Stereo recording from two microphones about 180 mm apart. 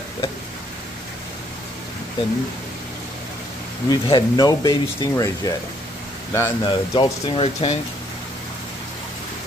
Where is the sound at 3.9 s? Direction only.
25° left (ahead or behind).